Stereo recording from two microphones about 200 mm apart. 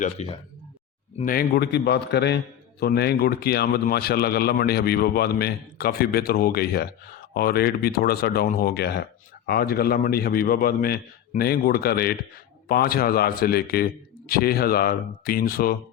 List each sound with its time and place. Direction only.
0.0 s speech: 35° left (ahead or behind)
1.2 s a man's voice: 45° left (ahead or behind)